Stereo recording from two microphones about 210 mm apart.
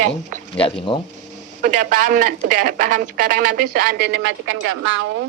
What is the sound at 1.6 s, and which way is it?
A woman's voice, 35° right (ahead or behind).